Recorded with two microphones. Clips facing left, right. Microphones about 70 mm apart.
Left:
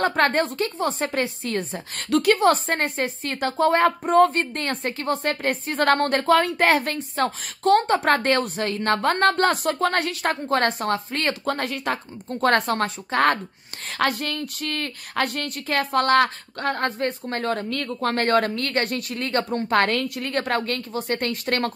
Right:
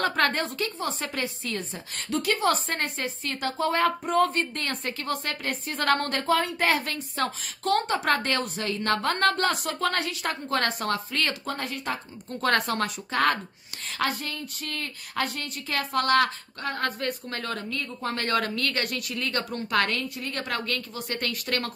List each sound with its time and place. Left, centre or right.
0.0 s a woman's voice: left
6.3 s a woman's voice: left
11.4 s speech: left
12.4 s a woman's voice: left
13.8 s a woman's voice: left
17.6 s a woman's voice: left
20.0 s a woman's voice: left